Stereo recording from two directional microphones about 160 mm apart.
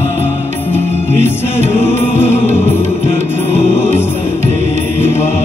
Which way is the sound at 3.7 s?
15° left (ahead or behind).